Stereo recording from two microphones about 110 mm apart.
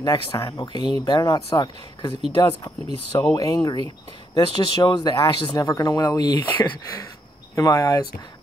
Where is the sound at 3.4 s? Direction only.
35° left (ahead or behind); by 5.5 s 50° left (ahead or behind).